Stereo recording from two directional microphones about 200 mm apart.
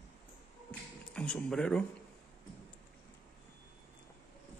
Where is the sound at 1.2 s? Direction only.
5° left (ahead or behind).